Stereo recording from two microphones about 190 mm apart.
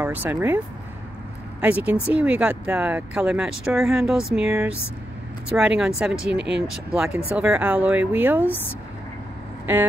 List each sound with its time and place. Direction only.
0.0 s speech: 10° right (ahead or behind)
1.6 s a woman's voice: 10° right (ahead or behind)
4.5 s a woman's voice: 15° right (ahead or behind)
5.5 s speech: 5° right (ahead or behind)
6.3 s speech: 65° right (ahead or behind)
6.9 s a woman's voice: 5° right (ahead or behind)